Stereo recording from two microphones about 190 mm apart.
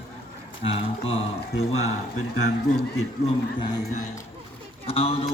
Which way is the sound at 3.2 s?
25° left (ahead or behind).